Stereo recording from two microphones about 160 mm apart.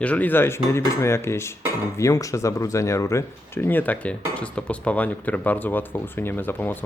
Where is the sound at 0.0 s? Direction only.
10° left (ahead or behind).